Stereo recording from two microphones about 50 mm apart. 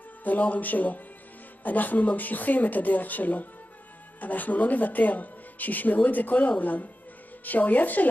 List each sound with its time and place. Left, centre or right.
0.2 s speech: left